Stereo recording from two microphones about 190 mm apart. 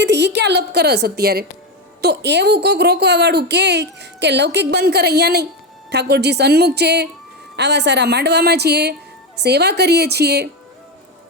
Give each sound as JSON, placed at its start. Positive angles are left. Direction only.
{"t": 0.0, "sound": "a woman's voice", "side_deg": -65}